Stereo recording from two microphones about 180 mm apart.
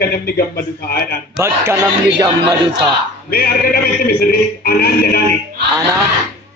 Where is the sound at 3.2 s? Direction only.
55° left (ahead or behind).